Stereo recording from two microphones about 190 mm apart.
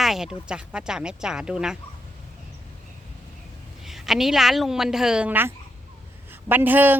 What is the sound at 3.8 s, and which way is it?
A woman's voice, centre (ahead or behind).